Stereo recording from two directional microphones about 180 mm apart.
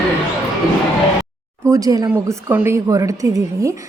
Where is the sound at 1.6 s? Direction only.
20° right (ahead or behind).